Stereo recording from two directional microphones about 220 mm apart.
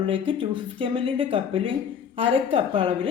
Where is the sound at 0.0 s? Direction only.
25° right (ahead or behind).